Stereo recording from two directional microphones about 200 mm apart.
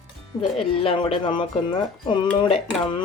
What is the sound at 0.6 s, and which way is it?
Speech, 25° left (ahead or behind).